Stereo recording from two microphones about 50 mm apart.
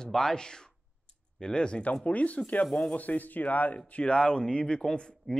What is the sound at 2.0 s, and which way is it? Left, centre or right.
Speech, left.